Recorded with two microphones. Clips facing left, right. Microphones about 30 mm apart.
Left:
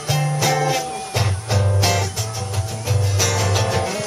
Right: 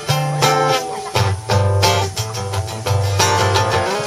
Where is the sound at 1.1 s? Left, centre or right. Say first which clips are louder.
Right 5 dB; right.